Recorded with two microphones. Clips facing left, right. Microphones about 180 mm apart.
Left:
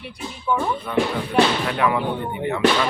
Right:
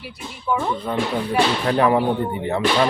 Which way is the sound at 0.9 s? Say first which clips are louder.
Even; 35° right (ahead or behind).